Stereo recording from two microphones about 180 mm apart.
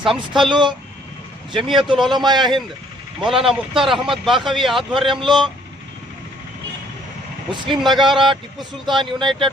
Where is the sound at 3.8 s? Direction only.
Centre (ahead or behind).